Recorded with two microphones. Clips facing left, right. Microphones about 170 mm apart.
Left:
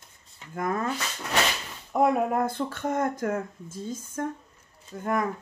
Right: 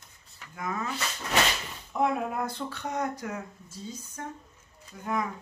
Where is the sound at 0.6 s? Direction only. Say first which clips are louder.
Left 5 dB; 50° left (ahead or behind).